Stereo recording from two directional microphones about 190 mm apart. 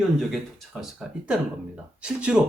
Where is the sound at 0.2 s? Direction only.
Centre (ahead or behind).